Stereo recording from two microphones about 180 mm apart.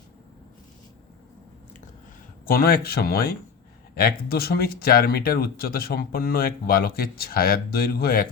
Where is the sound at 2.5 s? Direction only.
55° left (ahead or behind).